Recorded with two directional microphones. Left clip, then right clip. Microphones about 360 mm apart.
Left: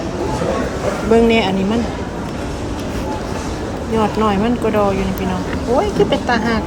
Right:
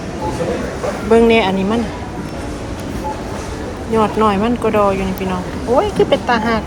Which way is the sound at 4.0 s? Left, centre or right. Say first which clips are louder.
Right 2 dB; centre.